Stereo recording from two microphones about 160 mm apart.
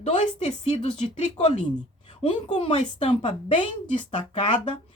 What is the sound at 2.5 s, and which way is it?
Speech, 40° left (ahead or behind).